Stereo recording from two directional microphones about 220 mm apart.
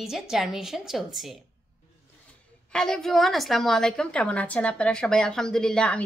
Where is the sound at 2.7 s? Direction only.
Centre (ahead or behind).